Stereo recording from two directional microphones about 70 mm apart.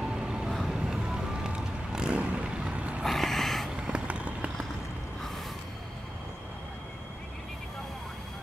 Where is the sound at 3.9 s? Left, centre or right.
Centre.